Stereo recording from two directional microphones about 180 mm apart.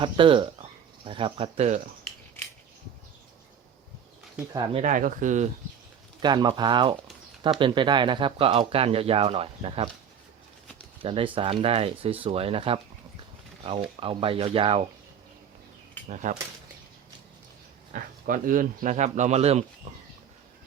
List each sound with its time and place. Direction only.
0.0 s speech: 30° right (ahead or behind)
4.5 s speech: 25° right (ahead or behind)
4.8 s speech: 45° right (ahead or behind)
6.2 s speech: 25° right (ahead or behind)
11.0 s speech: 30° right (ahead or behind)
14.0 s speech: 30° right (ahead or behind)
16.0 s speech: 45° right (ahead or behind)
17.9 s speech: 50° right (ahead or behind)